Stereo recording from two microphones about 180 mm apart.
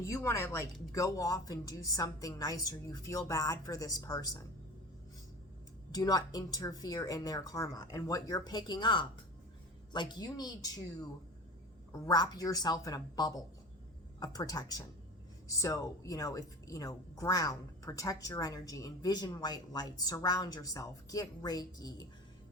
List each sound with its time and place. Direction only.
0.0 s a woman's voice: 15° left (ahead or behind)
5.9 s speech: 20° left (ahead or behind)